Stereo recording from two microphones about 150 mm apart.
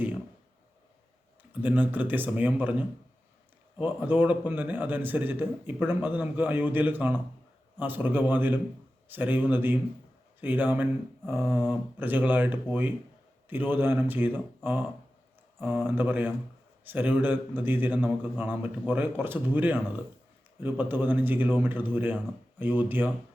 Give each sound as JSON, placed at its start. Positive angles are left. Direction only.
{"t": 1.6, "sound": "a man's voice", "side_deg": -10}